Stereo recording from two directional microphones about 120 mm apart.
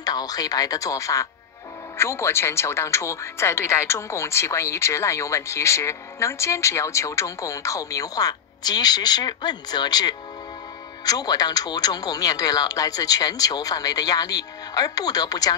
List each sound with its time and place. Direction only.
0.0 s speech: 30° left (ahead or behind)